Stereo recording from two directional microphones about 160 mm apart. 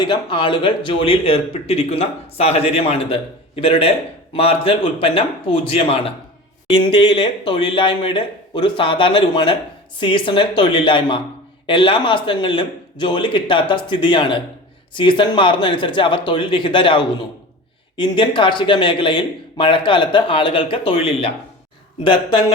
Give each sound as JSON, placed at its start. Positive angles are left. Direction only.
{"t": 0.0, "sound": "speech", "side_deg": 30}